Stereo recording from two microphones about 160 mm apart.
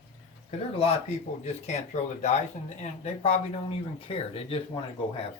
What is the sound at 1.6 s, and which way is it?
Speech, 45° left (ahead or behind).